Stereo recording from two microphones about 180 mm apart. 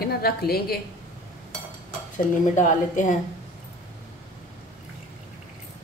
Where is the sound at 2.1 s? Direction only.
45° left (ahead or behind).